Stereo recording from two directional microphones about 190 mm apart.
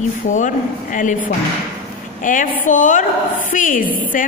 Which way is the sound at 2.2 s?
45° left (ahead or behind).